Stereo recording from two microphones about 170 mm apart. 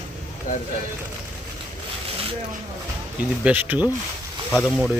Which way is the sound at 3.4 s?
10° right (ahead or behind).